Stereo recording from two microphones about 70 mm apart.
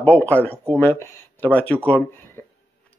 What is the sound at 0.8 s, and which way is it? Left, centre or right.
Speech, left.